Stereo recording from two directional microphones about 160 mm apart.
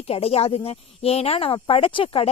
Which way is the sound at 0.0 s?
40° left (ahead or behind).